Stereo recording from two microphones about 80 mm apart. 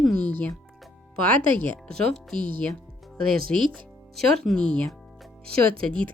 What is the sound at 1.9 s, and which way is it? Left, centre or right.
Speech, centre.